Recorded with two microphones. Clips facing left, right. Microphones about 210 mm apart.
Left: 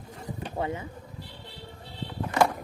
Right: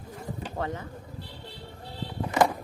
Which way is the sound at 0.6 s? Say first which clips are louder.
Left 2 dB; 10° left (ahead or behind).